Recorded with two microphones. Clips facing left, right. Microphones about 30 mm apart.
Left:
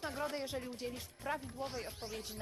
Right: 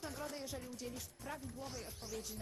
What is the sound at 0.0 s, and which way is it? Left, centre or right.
Speech, left.